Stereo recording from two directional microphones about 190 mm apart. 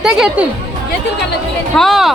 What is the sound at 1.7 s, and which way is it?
Speech, centre (ahead or behind).